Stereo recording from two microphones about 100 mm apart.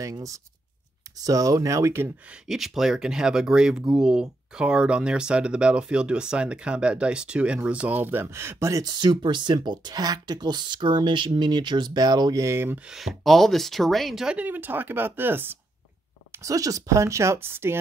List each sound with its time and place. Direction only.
0.0 s speech: 35° right (ahead or behind)
2.4 s speech: 5° right (ahead or behind); by 8.8 s 30° right (ahead or behind)
8.8 s speech: 45° right (ahead or behind)
12.4 s speech: 25° right (ahead or behind)
12.7 s speech: 5° right (ahead or behind)
14.4 s speech: 20° right (ahead or behind)
16.4 s speech: 35° right (ahead or behind)